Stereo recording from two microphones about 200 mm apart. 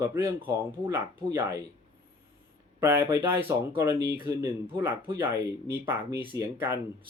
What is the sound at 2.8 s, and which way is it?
Speech, 15° right (ahead or behind).